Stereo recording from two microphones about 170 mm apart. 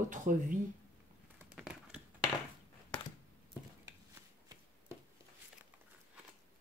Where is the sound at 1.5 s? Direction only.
5° right (ahead or behind).